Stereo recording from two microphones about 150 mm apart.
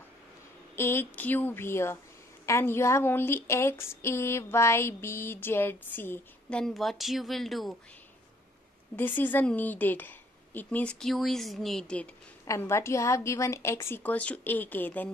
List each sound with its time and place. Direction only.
0.7 s speech: 15° left (ahead or behind)
6.6 s speech: centre (ahead or behind)
8.9 s speech: 10° left (ahead or behind)
12.4 s speech: 20° left (ahead or behind)